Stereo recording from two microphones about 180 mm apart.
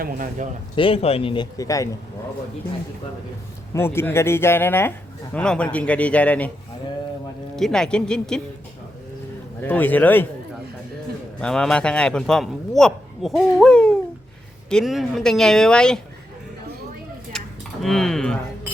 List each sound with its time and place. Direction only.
0.0 s speech: 50° right (ahead or behind)
0.8 s speech: 30° left (ahead or behind)
3.8 s a man's voice: 15° left (ahead or behind)
7.5 s a man's voice: 5° left (ahead or behind)
9.6 s a man's voice: 10° left (ahead or behind)
11.3 s a man's voice: 5° left (ahead or behind)
17.8 s a man's voice: centre (ahead or behind)